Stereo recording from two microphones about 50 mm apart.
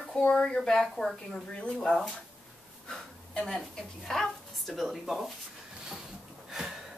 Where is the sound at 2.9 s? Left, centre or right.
Centre.